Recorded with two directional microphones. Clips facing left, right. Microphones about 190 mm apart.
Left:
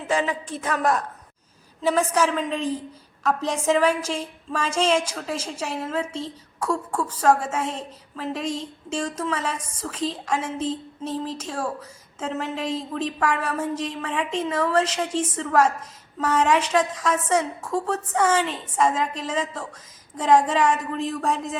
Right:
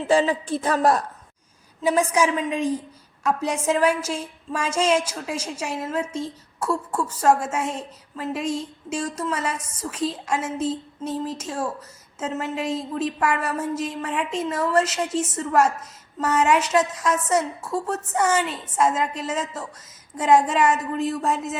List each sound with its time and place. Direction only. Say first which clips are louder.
0.1 s a woman's voice: right 5 dB; 30° right (ahead or behind)
1.8 s a woman's voice: right 1 dB; 10° right (ahead or behind)
16.2 s a woman's voice: right 1 dB; 10° right (ahead or behind)